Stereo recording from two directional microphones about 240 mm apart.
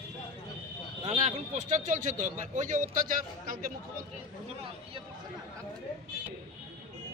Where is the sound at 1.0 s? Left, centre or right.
Right.